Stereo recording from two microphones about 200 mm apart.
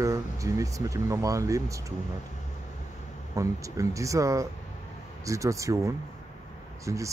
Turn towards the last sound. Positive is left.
turn(degrees=-15)  # may be behind; listen again after turning